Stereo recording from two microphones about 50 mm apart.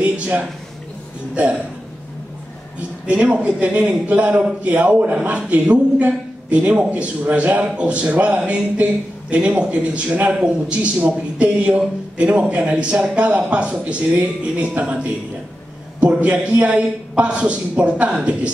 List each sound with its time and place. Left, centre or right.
0.0 s a sound: right
1.3 s a man's voice: right
3.1 s a man's voice: right